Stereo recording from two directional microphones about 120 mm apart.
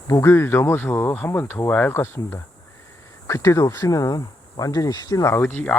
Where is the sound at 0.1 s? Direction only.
20° left (ahead or behind).